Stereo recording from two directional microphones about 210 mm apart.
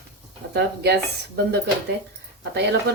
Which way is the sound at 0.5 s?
50° right (ahead or behind).